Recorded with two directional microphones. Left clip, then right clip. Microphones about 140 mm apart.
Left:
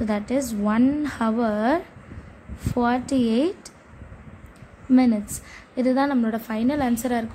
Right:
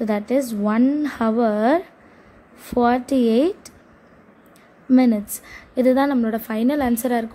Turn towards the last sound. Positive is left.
turn(degrees=-30)  # may be behind; listen again after turning